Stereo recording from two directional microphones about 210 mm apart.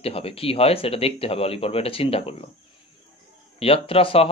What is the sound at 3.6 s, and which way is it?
Speech, 25° left (ahead or behind).